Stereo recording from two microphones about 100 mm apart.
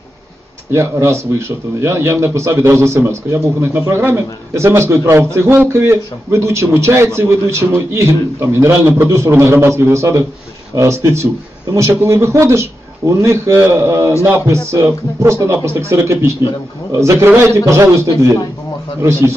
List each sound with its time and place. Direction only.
0.7 s speech: 30° right (ahead or behind)